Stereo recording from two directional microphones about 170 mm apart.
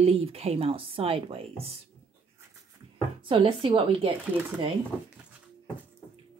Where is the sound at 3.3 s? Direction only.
30° right (ahead or behind).